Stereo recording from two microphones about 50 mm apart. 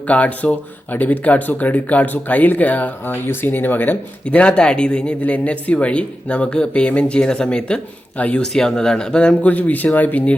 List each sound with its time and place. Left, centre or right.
0.1 s speech: left
4.3 s speech: left
9.4 s speech: left